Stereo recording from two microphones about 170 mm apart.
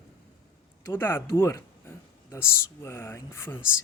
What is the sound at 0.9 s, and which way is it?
Speech, 15° left (ahead or behind).